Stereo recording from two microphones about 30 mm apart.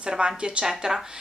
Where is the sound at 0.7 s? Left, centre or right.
Centre.